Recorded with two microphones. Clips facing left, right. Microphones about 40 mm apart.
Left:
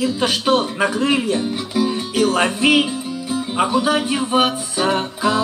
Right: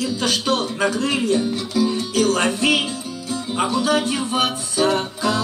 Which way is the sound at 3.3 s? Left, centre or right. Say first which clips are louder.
Left 3 dB; centre.